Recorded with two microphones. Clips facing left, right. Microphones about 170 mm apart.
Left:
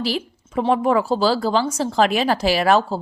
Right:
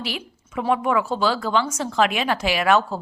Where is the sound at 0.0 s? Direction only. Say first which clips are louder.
Left 7 dB; 35° left (ahead or behind).